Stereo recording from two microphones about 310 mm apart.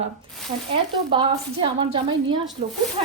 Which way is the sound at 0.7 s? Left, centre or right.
Centre.